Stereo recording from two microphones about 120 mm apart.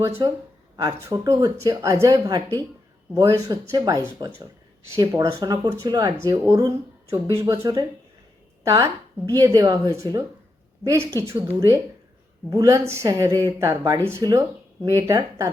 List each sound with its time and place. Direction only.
0.2 s speech: 35° right (ahead or behind)
0.8 s speech: 25° right (ahead or behind)